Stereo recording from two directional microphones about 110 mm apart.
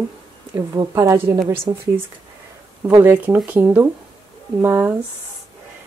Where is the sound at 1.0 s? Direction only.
25° right (ahead or behind).